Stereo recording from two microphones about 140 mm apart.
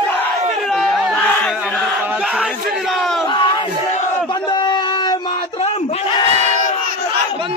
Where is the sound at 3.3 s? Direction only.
30° left (ahead or behind).